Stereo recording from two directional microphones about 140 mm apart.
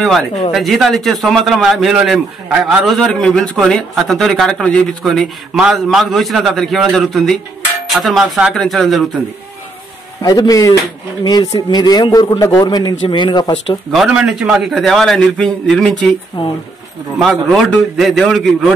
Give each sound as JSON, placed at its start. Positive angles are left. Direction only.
{"t": 0.5, "sound": "a man's voice", "side_deg": 0}
{"t": 10.2, "sound": "a man's voice", "side_deg": 25}
{"t": 13.9, "sound": "a man's voice", "side_deg": -5}
{"t": 17.2, "sound": "a man's voice", "side_deg": 0}